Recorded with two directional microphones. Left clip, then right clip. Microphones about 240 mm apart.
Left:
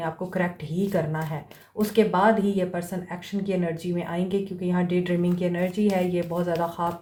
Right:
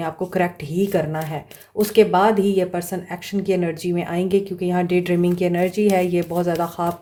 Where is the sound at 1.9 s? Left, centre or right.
Right.